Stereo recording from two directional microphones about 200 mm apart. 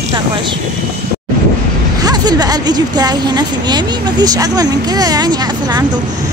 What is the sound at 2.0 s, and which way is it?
A woman's voice, 20° right (ahead or behind).